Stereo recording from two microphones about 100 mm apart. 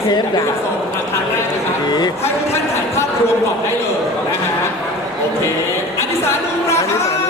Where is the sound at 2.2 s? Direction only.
25° left (ahead or behind).